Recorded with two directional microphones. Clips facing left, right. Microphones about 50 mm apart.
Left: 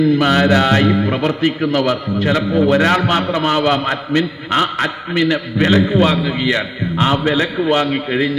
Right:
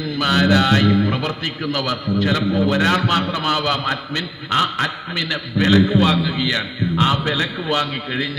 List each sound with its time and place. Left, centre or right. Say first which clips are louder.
0.0 s a man's voice: left 5 dB; left
4.2 s a man's voice: left 2 dB; left
4.8 s a man's voice: left 5 dB; left